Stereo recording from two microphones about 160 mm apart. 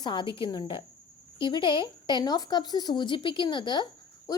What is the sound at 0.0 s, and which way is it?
A woman's voice, 30° left (ahead or behind).